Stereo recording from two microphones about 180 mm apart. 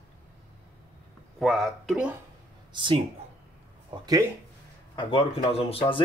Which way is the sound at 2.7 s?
30° right (ahead or behind).